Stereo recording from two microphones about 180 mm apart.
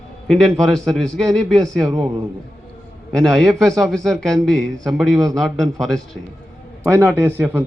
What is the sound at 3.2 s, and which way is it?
Speech, centre (ahead or behind).